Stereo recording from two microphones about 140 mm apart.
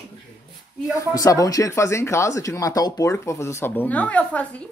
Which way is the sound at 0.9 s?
25° left (ahead or behind).